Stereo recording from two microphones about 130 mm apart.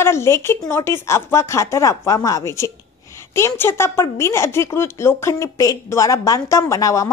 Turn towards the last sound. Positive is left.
turn(degrees=25)  # may be behind; listen again after turning